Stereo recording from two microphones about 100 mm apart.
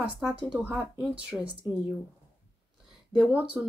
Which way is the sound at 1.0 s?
15° right (ahead or behind).